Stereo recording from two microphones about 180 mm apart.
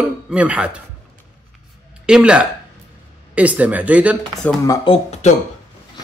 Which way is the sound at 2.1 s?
5° right (ahead or behind).